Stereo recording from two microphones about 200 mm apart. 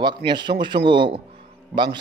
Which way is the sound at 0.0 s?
20° right (ahead or behind).